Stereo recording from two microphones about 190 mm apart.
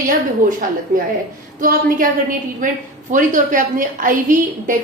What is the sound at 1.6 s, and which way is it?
A woman's voice, 45° right (ahead or behind).